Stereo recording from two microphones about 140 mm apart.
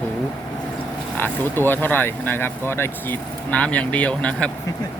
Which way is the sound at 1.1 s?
15° left (ahead or behind).